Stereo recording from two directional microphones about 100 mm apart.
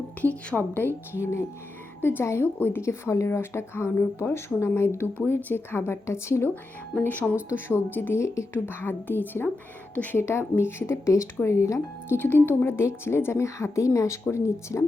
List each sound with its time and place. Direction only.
0.2 s speech: 15° left (ahead or behind)
7.0 s speech: 20° left (ahead or behind)